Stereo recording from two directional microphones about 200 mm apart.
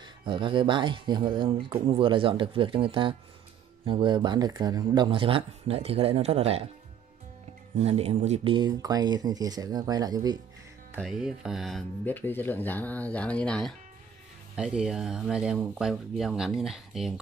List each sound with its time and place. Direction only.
0.0 s speech: 25° right (ahead or behind)
7.8 s speech: 30° right (ahead or behind)
11.0 s speech: centre (ahead or behind)